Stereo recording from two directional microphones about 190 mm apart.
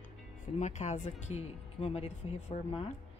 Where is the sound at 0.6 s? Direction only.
35° left (ahead or behind).